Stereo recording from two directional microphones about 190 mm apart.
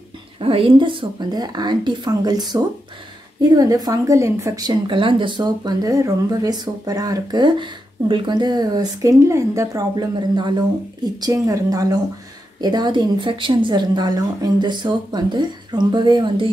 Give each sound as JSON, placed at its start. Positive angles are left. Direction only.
{"t": 0.4, "sound": "a woman's voice", "side_deg": -30}